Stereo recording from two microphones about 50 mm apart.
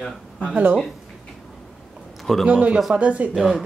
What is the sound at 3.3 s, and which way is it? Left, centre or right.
Speech, centre.